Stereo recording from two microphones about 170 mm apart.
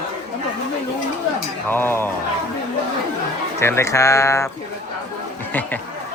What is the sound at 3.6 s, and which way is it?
Speech, 15° left (ahead or behind).